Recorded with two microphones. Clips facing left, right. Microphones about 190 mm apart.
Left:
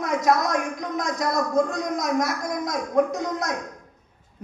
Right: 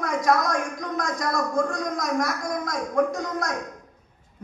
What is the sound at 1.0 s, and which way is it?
A man's voice, 20° left (ahead or behind).